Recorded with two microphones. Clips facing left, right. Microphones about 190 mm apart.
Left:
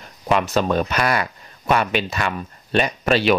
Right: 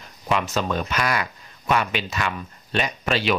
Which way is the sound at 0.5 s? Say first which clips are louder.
Left 5 dB; 50° left (ahead or behind).